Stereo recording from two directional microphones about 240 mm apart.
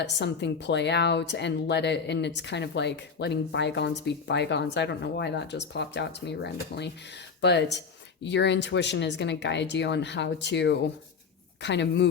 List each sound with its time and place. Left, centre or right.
0.0 s speech: left
8.2 s speech: left